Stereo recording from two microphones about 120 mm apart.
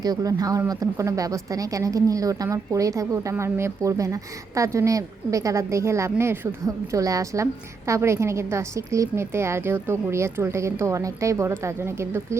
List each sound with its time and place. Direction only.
0.0 s a woman's voice: 30° right (ahead or behind)